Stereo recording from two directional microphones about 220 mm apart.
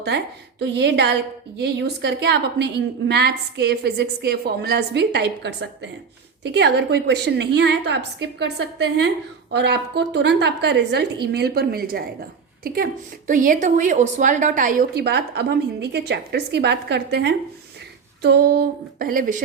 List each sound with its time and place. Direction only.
0.6 s speech: 50° right (ahead or behind)